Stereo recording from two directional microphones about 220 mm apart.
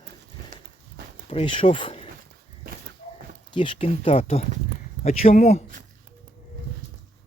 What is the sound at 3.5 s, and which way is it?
Speech, 25° left (ahead or behind).